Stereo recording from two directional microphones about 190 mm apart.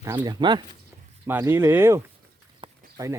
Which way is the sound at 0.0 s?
15° right (ahead or behind).